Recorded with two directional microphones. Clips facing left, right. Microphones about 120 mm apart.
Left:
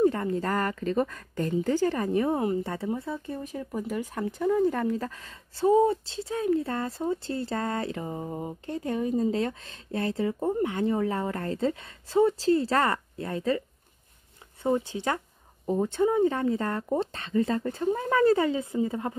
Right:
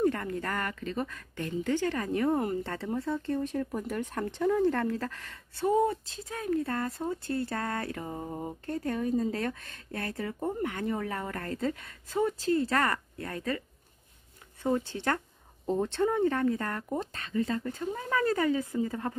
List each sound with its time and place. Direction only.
0.0 s speech: 20° left (ahead or behind)
2.4 s speech: 15° left (ahead or behind)
8.1 s speech: 5° left (ahead or behind)
8.6 s speech: 20° left (ahead or behind)
15.1 s speech: 10° left (ahead or behind)